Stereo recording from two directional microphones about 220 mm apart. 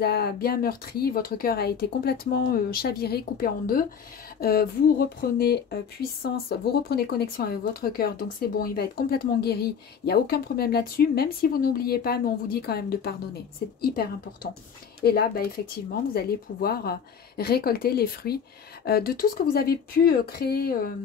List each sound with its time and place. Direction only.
0.0 s speech: 45° left (ahead or behind)